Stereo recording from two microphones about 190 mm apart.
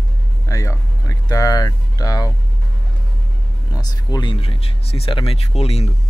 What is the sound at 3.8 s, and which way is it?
Speech, 20° left (ahead or behind).